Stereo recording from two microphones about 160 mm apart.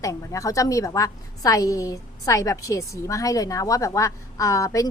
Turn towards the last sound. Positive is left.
turn(degrees=20)  # may be behind; listen again after turning